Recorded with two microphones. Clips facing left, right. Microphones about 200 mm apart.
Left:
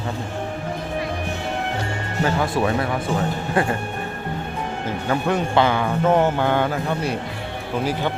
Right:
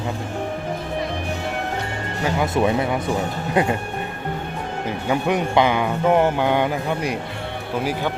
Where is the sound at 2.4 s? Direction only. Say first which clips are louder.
Right 2 dB; 20° right (ahead or behind).